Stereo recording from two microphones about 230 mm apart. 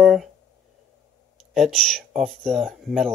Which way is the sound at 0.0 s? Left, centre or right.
Centre.